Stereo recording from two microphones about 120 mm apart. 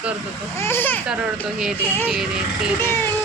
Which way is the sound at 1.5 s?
5° right (ahead or behind).